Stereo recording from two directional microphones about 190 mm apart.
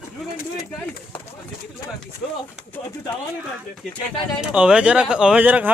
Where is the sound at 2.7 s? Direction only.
10° left (ahead or behind).